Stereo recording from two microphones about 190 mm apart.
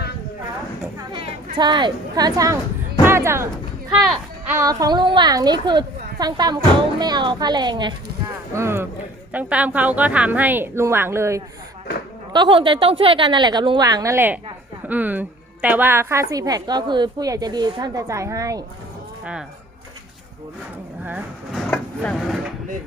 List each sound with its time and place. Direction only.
1.5 s a woman's voice: 25° right (ahead or behind)
8.5 s a woman's voice: 15° right (ahead or behind)
12.3 s a woman's voice: 25° right (ahead or behind)
19.2 s speech: 5° right (ahead or behind)
21.0 s a woman's voice: 5° right (ahead or behind)
21.7 s speech: 5° left (ahead or behind)